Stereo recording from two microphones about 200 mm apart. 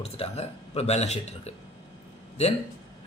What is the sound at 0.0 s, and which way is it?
A man's voice, 30° left (ahead or behind).